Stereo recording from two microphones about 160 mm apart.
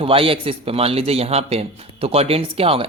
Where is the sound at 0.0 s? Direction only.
35° right (ahead or behind).